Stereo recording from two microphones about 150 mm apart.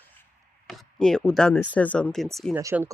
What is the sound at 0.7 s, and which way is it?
Speech, 5° left (ahead or behind).